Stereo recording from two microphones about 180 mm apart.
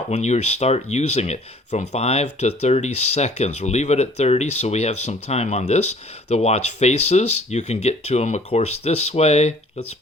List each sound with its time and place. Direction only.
0.1 s speech: 40° left (ahead or behind)